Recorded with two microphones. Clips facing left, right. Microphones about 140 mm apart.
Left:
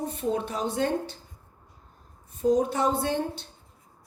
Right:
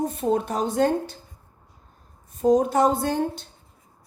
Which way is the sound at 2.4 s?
45° right (ahead or behind).